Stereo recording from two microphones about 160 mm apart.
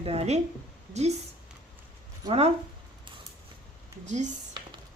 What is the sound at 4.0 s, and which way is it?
Speech, 45° right (ahead or behind).